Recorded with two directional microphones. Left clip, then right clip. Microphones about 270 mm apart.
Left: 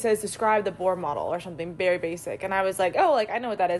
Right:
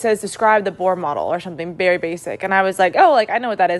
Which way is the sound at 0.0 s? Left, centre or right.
Right.